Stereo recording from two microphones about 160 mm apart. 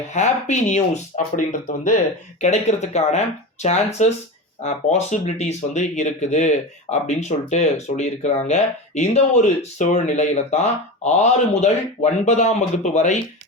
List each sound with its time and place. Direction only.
0.1 s speech: 45° left (ahead or behind)
2.4 s speech: 45° left (ahead or behind)